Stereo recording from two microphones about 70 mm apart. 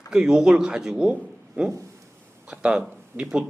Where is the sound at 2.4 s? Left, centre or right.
Centre.